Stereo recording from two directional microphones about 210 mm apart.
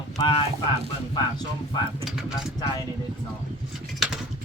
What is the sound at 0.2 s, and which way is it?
A man's voice, 25° left (ahead or behind).